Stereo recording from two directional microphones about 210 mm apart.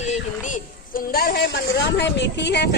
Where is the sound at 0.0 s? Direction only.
35° left (ahead or behind).